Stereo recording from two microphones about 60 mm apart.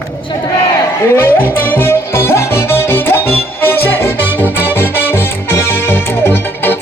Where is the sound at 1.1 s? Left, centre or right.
Left.